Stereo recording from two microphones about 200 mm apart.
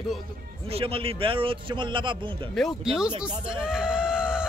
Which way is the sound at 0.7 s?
30° right (ahead or behind).